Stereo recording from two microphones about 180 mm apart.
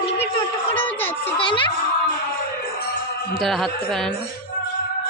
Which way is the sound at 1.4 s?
25° left (ahead or behind).